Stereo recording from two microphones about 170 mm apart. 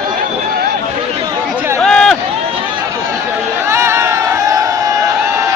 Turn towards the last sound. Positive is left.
turn(degrees=-15)  # may be behind; listen again after turning